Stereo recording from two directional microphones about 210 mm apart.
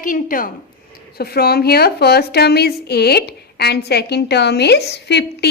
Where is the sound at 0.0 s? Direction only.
40° left (ahead or behind).